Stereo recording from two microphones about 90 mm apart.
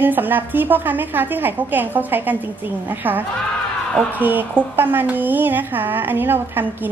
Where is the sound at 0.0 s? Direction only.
20° right (ahead or behind).